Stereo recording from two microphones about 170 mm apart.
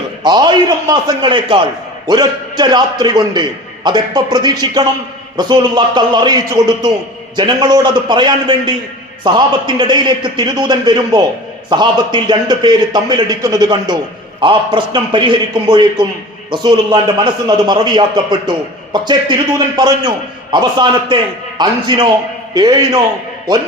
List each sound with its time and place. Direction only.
0.2 s a man's voice: 25° right (ahead or behind)